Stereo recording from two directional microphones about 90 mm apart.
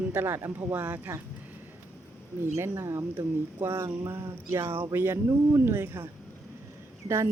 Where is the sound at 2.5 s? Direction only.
35° right (ahead or behind).